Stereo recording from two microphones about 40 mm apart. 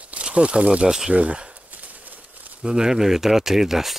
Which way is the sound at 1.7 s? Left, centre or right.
Right.